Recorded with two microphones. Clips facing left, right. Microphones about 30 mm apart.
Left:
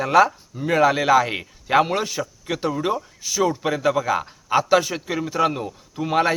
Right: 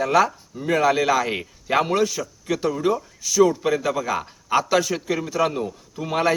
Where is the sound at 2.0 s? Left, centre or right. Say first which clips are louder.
Right 3 dB; left.